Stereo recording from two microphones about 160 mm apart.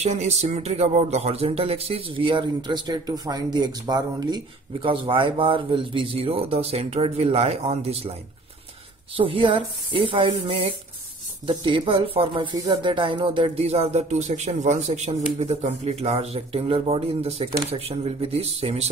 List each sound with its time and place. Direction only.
0.0 s speech: 45° right (ahead or behind)
9.1 s speech: 35° right (ahead or behind)